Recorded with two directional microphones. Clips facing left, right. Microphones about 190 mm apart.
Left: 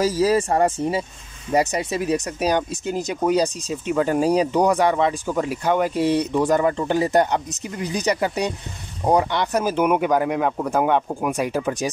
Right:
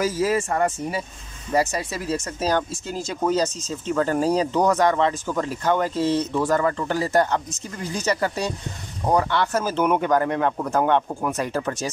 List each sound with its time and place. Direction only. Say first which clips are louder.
0.0 s speech: left 3 dB; 35° left (ahead or behind); by 11.9 s 10° left (ahead or behind)